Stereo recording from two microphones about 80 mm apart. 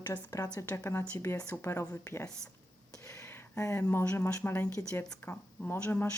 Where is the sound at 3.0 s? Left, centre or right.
Left.